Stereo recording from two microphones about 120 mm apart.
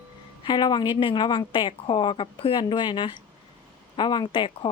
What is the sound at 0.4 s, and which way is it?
A woman's voice, 40° left (ahead or behind).